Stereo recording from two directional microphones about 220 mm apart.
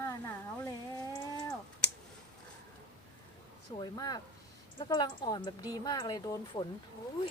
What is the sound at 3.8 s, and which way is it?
Speech, 20° left (ahead or behind).